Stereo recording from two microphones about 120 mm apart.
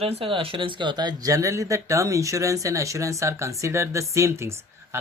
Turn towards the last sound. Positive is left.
turn(degrees=-20)  # may be behind; listen again after turning